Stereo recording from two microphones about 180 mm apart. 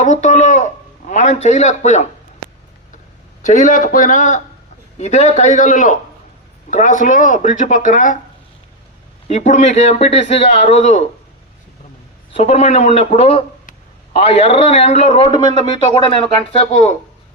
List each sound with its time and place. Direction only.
0.0 s speech: 45° left (ahead or behind)
3.4 s a man's voice: 45° left (ahead or behind)
9.2 s a man's voice: 40° left (ahead or behind)
12.3 s a man's voice: 35° left (ahead or behind)
15.3 s speech: 25° left (ahead or behind)